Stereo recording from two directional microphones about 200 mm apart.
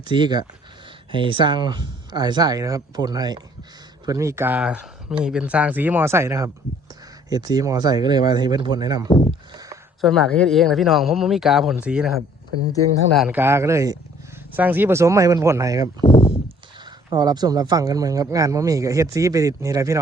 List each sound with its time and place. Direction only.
0.0 s speech: 25° right (ahead or behind)
9.0 s speech: 25° left (ahead or behind)
10.0 s speech: centre (ahead or behind)
13.1 s speech: 5° right (ahead or behind)
16.0 s speech: 20° left (ahead or behind)
17.1 s speech: 20° right (ahead or behind)